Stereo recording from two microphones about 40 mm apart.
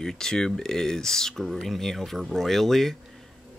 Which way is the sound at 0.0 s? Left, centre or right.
Centre.